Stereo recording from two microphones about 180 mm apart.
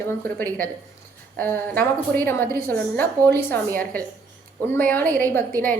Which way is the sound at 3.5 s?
10° left (ahead or behind).